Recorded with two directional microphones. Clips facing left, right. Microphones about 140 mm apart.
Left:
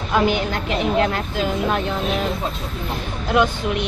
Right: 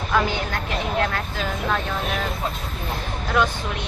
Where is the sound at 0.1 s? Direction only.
20° left (ahead or behind).